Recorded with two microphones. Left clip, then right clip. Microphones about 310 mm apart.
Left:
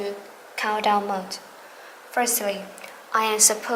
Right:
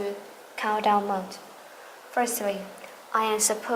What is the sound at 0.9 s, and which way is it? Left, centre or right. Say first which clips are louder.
A woman's voice: left 1 dB; centre.